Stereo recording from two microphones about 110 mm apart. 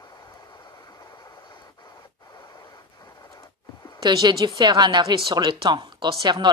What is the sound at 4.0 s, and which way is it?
A woman's voice, 35° right (ahead or behind).